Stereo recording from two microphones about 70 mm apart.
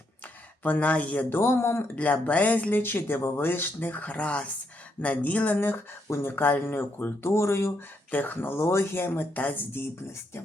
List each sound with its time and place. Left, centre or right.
0.6 s speech: left
1.4 s speech: left
2.2 s speech: left
8.1 s speech: left